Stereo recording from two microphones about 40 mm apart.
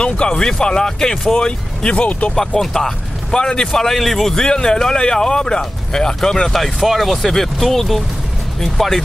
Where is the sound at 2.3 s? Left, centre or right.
Centre.